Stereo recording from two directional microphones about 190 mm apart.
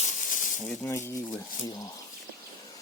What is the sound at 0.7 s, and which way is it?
Speech, 15° left (ahead or behind).